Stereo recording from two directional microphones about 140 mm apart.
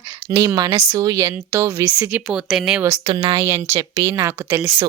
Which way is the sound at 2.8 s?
20° right (ahead or behind).